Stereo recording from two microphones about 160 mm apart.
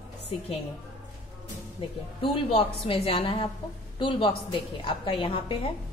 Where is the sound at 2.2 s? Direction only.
35° left (ahead or behind).